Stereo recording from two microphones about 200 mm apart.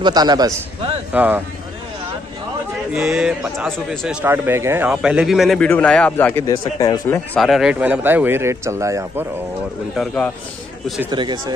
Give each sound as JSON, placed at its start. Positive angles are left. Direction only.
{"t": 0.0, "sound": "a man's voice", "side_deg": -20}
{"t": 1.1, "sound": "a man's voice", "side_deg": -10}
{"t": 2.9, "sound": "speech", "side_deg": 0}
{"t": 4.2, "sound": "speech", "side_deg": -10}
{"t": 7.3, "sound": "a man's voice", "side_deg": 0}
{"t": 9.9, "sound": "speech", "side_deg": 5}
{"t": 11.1, "sound": "a man's voice", "side_deg": -20}